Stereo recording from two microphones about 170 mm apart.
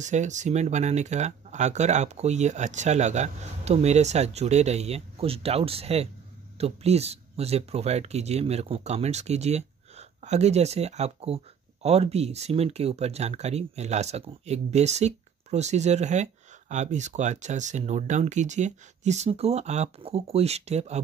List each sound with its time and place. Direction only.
0.0 s speech: 45° right (ahead or behind)